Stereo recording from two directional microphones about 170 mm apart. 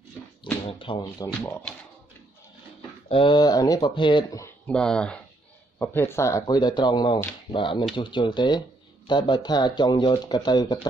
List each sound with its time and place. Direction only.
0.4 s a sound: 30° left (ahead or behind)
1.4 s speech: 5° left (ahead or behind)
3.1 s speech: 30° left (ahead or behind)
4.6 s speech: 5° left (ahead or behind); by 10.9 s 25° left (ahead or behind)